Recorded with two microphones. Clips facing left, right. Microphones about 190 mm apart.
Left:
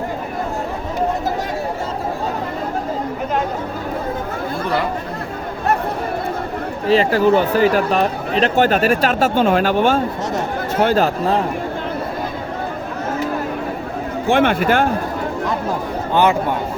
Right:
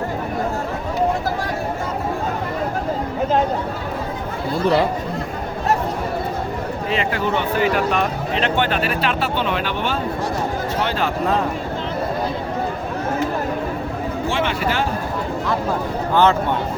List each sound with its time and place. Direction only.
6.8 s speech: 35° left (ahead or behind)
14.3 s speech: 55° left (ahead or behind)